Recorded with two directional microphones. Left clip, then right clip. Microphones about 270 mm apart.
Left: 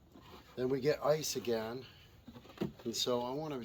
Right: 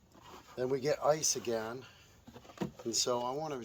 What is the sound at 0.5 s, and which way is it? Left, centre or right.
Speech, right.